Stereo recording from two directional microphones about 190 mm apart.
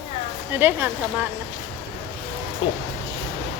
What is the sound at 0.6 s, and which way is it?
Speech, 10° right (ahead or behind).